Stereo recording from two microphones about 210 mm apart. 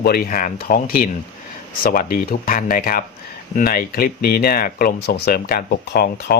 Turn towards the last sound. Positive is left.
turn(degrees=45)  # may be behind; listen again after turning